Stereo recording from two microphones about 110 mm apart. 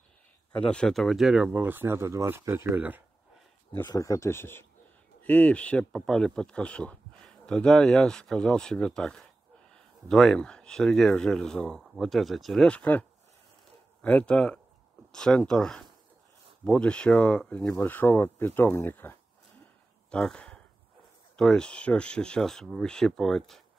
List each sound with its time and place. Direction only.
0.5 s speech: 10° left (ahead or behind); by 3.0 s 15° right (ahead or behind)
3.8 s speech: 35° left (ahead or behind)
5.2 s a man's voice: 10° left (ahead or behind)
14.0 s a man's voice: 10° left (ahead or behind)
20.1 s a man's voice: 10° left (ahead or behind)